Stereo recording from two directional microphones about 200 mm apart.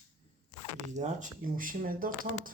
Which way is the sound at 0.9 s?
40° right (ahead or behind).